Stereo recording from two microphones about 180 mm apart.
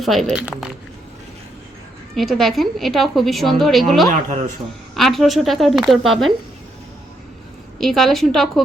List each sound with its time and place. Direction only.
0.0 s a woman's voice: centre (ahead or behind)
2.1 s a woman's voice: centre (ahead or behind)
4.1 s speech: 40° right (ahead or behind)
4.9 s a woman's voice: centre (ahead or behind)
7.8 s a woman's voice: centre (ahead or behind)